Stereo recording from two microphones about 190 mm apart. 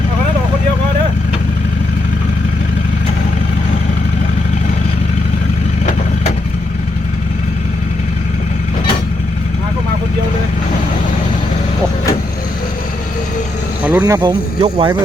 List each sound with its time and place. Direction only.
13.8 s speech: 10° right (ahead or behind)